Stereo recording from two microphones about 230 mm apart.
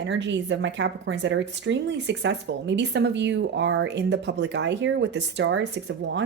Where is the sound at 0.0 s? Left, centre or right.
Right.